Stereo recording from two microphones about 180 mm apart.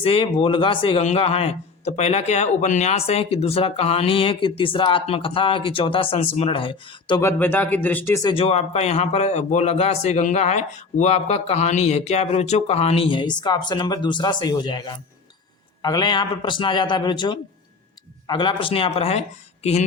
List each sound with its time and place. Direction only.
0.0 s a man's voice: 30° left (ahead or behind)
7.2 s speech: 10° left (ahead or behind)
8.3 s a man's voice: 30° left (ahead or behind)